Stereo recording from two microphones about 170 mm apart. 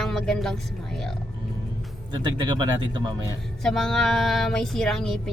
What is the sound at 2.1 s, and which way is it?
Speech, 25° right (ahead or behind).